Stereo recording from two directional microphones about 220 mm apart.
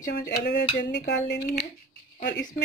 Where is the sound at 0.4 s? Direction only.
50° left (ahead or behind).